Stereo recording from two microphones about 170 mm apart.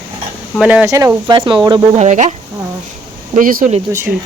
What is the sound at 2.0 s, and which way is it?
Speech, 45° right (ahead or behind).